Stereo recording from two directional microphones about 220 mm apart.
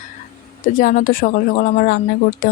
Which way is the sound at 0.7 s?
35° left (ahead or behind).